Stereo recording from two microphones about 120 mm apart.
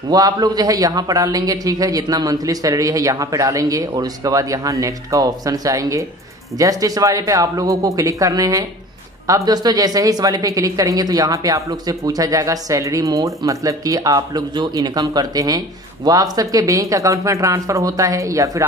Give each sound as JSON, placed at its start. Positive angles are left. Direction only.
{"t": 0.1, "sound": "a woman's voice", "side_deg": -30}